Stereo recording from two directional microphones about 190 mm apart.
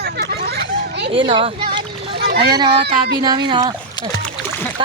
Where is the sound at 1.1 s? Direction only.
25° right (ahead or behind).